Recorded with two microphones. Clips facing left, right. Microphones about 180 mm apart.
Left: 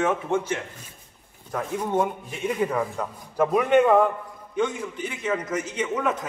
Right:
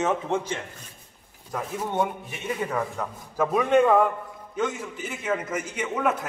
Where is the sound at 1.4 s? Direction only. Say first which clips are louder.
Left 3 dB; 5° right (ahead or behind).